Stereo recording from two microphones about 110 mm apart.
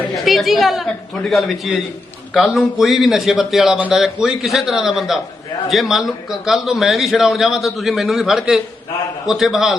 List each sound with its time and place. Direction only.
0.3 s a man's voice: centre (ahead or behind)